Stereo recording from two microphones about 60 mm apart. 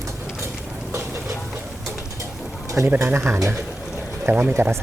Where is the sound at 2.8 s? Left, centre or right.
Right.